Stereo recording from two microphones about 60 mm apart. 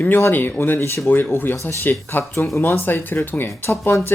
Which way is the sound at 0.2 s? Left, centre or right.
Left.